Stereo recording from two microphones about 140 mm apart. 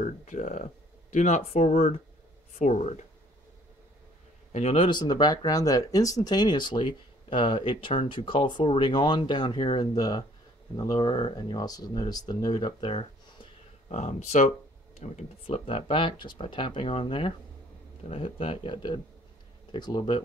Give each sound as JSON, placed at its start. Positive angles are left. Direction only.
{"t": 0.0, "sound": "speech", "side_deg": 60}
{"t": 4.5, "sound": "speech", "side_deg": 50}
{"t": 13.8, "sound": "speech", "side_deg": 55}